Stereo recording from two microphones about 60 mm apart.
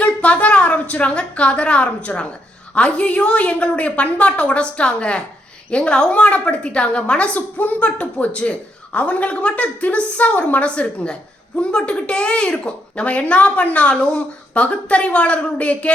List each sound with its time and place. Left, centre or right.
0.0 s a woman's voice: left